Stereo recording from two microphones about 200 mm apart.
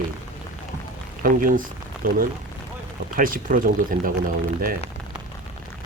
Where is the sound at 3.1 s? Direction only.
45° right (ahead or behind).